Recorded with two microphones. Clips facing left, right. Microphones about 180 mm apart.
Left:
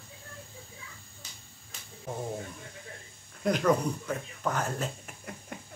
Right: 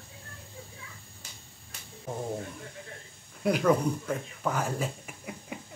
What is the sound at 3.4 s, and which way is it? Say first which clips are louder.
Speech: right 1 dB; 5° right (ahead or behind).